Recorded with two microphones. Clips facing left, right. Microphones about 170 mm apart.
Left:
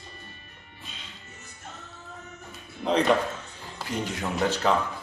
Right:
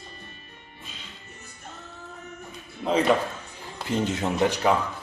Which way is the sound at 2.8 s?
Centre (ahead or behind).